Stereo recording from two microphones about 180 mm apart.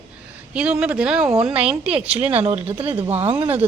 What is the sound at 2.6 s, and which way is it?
Speech, 10° right (ahead or behind).